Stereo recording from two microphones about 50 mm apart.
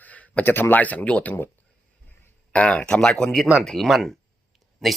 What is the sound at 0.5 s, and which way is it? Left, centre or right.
Speech, left.